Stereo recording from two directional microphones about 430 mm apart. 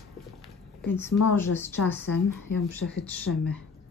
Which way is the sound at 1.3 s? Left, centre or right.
Centre.